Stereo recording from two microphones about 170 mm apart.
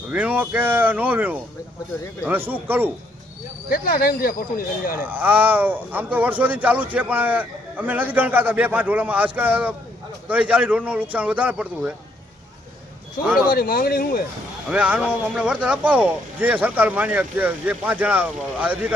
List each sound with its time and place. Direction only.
0.1 s speech: 10° right (ahead or behind)
3.7 s speech: 55° left (ahead or behind)
4.9 s speech: 10° right (ahead or behind)
13.5 s speech: 60° left (ahead or behind)
14.7 s speech: 5° right (ahead or behind)